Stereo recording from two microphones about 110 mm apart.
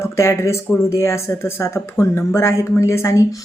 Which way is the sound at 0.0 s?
25° left (ahead or behind).